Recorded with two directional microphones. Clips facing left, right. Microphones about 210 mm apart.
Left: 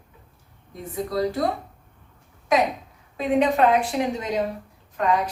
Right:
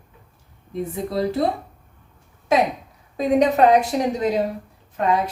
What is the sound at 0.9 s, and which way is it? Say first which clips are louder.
Speech: even; 25° right (ahead or behind).